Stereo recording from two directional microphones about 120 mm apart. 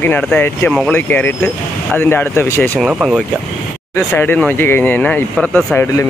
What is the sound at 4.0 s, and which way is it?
Speech, 15° left (ahead or behind).